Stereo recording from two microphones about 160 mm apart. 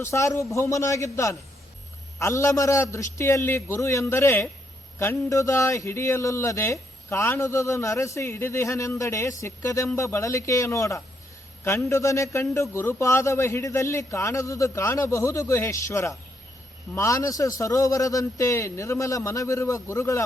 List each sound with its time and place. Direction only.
0.0 s a man's voice: 20° left (ahead or behind)